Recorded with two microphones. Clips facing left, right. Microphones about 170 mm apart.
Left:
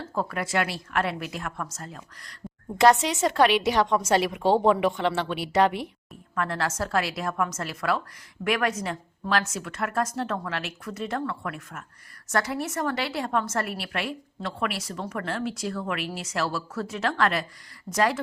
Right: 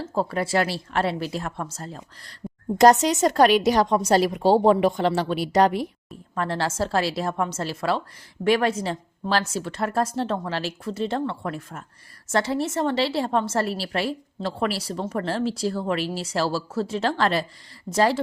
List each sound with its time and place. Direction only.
0.1 s a woman's voice: 30° right (ahead or behind)